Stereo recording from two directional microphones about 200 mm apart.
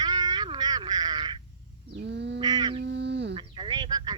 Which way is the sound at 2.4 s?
20° right (ahead or behind).